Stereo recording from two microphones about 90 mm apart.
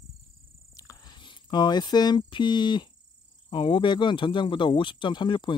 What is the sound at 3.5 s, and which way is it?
Speech, 70° left (ahead or behind).